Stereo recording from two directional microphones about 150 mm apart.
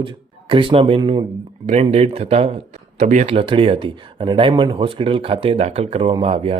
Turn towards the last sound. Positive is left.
turn(degrees=-40)  # may be behind; listen again after turning